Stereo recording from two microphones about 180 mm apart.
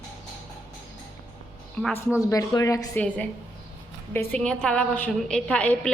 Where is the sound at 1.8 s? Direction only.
10° left (ahead or behind).